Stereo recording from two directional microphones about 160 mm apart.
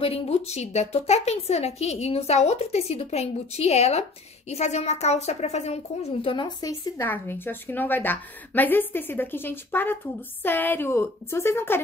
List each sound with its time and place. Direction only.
0.0 s a woman's voice: 40° left (ahead or behind); by 11.8 s 15° left (ahead or behind)